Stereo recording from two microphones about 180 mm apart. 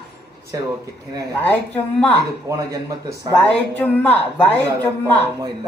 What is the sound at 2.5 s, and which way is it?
Speech, 20° right (ahead or behind).